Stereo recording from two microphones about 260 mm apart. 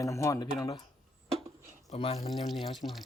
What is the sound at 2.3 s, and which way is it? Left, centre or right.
Chopping, centre.